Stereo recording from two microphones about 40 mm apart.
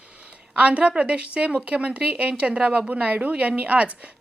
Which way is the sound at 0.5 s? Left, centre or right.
Right.